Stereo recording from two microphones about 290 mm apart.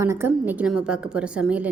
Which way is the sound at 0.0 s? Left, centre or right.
Centre.